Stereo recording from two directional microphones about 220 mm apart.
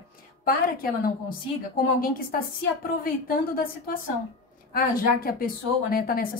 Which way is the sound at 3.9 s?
40° left (ahead or behind).